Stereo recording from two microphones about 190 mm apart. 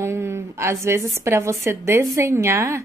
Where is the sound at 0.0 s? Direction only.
15° right (ahead or behind).